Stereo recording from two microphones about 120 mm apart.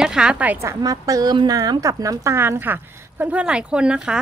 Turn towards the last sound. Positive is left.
turn(degrees=-5)  # may be behind; listen again after turning